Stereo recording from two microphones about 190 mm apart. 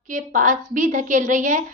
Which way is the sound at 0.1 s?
40° right (ahead or behind).